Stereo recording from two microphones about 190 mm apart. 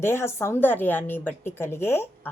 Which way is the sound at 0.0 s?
15° left (ahead or behind).